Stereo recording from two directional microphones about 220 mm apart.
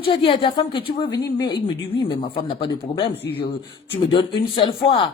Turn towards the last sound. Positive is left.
turn(degrees=25)  # may be behind; listen again after turning